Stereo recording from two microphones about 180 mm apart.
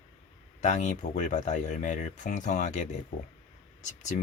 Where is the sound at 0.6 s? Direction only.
40° left (ahead or behind).